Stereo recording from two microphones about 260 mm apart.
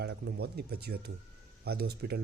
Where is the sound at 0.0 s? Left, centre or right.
Right.